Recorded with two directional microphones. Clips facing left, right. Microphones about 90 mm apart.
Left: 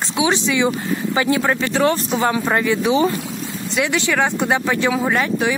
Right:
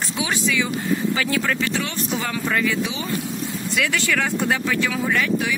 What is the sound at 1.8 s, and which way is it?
Speech, 40° left (ahead or behind).